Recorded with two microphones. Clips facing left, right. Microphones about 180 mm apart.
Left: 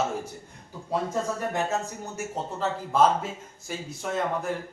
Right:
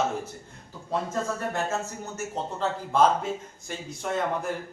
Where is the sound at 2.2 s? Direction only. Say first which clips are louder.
Even; 5° left (ahead or behind).